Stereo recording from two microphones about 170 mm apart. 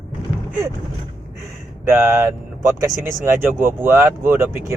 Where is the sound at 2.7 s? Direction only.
15° right (ahead or behind).